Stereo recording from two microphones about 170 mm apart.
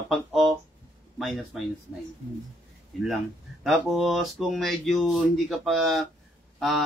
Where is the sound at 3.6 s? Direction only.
Centre (ahead or behind).